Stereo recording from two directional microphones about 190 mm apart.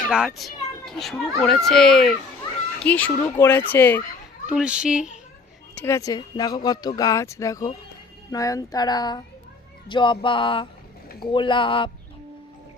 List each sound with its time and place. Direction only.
0.1 s a child's voice: centre (ahead or behind)
4.4 s a child's voice: 5° right (ahead or behind)
5.8 s speech: 15° left (ahead or behind)